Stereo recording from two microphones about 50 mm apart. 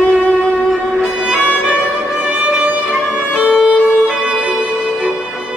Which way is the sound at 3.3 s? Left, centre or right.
Centre.